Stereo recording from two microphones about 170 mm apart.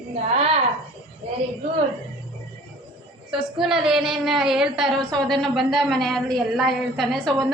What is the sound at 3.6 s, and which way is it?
A woman's voice, 5° right (ahead or behind).